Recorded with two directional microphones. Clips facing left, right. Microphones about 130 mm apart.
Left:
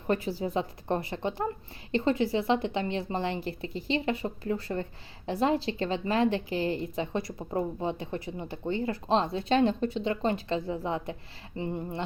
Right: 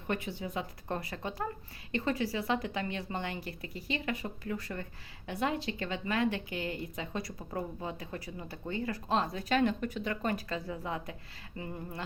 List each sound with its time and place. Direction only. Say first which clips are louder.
0.1 s a woman's voice: left 7 dB; 35° left (ahead or behind)